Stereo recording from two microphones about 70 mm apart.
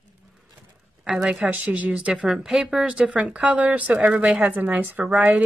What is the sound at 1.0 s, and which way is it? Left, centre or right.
Speech, centre.